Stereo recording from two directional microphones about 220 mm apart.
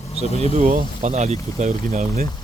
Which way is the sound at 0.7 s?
35° right (ahead or behind).